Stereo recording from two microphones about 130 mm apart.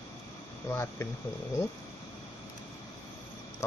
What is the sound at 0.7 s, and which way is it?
Speech, 20° left (ahead or behind).